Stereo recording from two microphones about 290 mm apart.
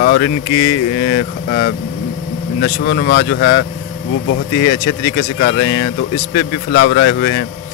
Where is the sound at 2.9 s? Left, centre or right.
Left.